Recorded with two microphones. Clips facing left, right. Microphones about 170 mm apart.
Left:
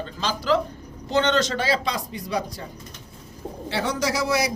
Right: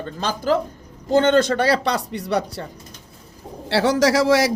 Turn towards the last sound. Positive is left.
turn(degrees=-90)